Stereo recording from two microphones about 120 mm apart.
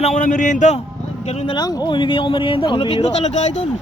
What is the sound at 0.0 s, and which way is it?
Speech, 85° left.